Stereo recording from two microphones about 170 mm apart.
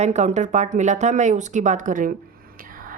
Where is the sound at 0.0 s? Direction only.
45° right (ahead or behind).